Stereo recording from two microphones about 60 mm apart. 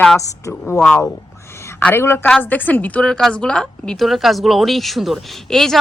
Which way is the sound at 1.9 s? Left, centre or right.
Left.